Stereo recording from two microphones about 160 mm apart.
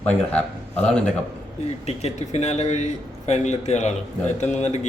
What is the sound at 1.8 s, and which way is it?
A man's voice, 45° left (ahead or behind).